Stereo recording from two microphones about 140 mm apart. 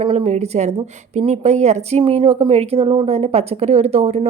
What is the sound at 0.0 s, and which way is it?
A woman's voice, 45° right (ahead or behind).